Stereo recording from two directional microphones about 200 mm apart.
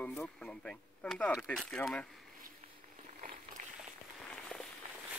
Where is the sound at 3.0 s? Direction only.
40° right (ahead or behind).